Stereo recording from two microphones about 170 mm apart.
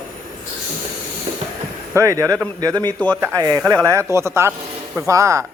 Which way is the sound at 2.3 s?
5° left (ahead or behind).